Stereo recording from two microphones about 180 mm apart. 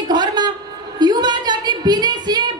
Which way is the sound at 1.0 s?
25° right (ahead or behind).